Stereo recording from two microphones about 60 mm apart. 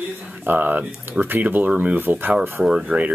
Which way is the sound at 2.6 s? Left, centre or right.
Centre.